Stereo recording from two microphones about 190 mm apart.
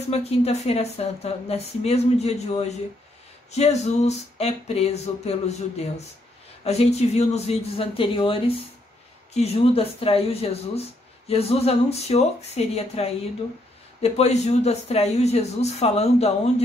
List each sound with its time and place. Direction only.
0.1 s speech: 35° left (ahead or behind)
6.6 s speech: 35° left (ahead or behind)